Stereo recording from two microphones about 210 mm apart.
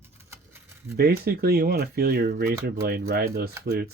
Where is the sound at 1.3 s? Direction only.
50° right (ahead or behind).